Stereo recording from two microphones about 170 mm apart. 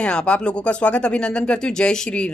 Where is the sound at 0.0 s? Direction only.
5° left (ahead or behind).